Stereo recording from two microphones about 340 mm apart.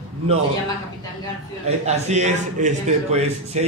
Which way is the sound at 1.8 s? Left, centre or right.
Centre.